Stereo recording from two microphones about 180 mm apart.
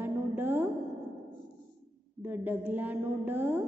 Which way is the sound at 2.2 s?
10° right (ahead or behind).